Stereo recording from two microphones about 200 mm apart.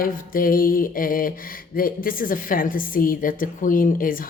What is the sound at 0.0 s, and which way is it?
Speech, 45° left (ahead or behind).